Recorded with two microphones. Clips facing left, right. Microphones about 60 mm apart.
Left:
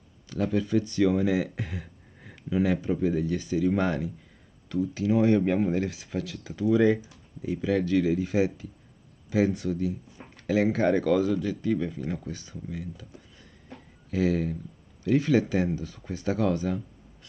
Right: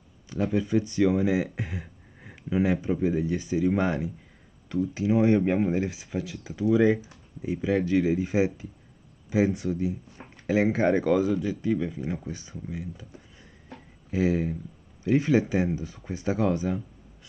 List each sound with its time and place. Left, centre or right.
0.3 s speech: centre